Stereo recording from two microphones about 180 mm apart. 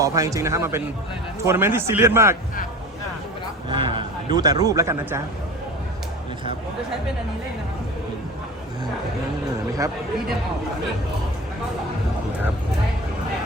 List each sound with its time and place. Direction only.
0.0 s a man's voice: 20° right (ahead or behind)
3.7 s a man's voice: 25° right (ahead or behind)